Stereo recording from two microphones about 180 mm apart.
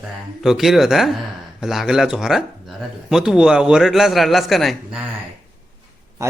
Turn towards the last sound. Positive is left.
turn(degrees=-15)  # may be behind; listen again after turning